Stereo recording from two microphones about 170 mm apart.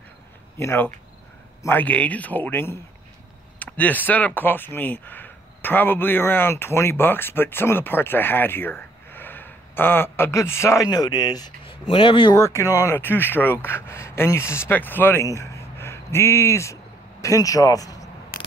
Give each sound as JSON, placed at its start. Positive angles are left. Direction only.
{"t": 0.6, "sound": "speech", "side_deg": 15}
{"t": 12.4, "sound": "speech", "side_deg": 15}
{"t": 12.6, "sound": "speech", "side_deg": -15}
{"t": 12.9, "sound": "a man's voice", "side_deg": 10}